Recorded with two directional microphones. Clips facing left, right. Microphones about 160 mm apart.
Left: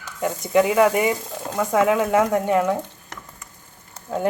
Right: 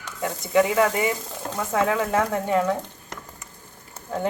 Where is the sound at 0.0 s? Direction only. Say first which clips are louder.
Left 4 dB; 15° left (ahead or behind).